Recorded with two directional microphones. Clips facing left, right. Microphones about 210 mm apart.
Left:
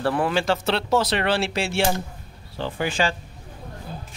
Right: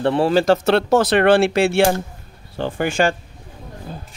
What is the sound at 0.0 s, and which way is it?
Speech, 25° right (ahead or behind).